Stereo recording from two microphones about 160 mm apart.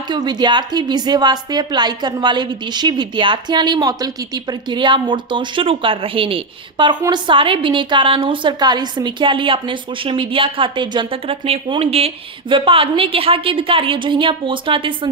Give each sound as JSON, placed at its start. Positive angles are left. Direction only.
{"t": 0.1, "sound": "a woman's voice", "side_deg": -25}